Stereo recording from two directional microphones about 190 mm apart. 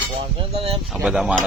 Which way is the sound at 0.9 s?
5° right (ahead or behind).